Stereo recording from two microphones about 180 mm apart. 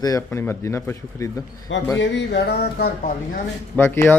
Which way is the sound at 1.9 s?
75° left (ahead or behind).